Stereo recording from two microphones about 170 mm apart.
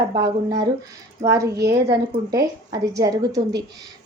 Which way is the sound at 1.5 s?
75° right (ahead or behind).